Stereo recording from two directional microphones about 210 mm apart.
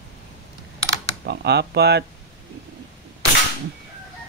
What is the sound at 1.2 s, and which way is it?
Speech, 55° right (ahead or behind).